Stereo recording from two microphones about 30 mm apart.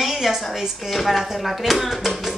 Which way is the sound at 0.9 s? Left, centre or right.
Centre.